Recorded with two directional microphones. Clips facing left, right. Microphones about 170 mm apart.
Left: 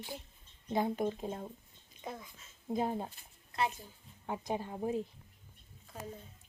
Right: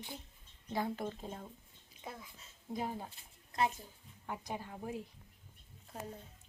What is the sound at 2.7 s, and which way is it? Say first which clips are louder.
Speech: left 6 dB; 25° left (ahead or behind).